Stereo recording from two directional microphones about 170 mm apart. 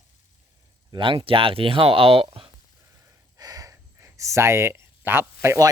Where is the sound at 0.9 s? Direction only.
25° right (ahead or behind).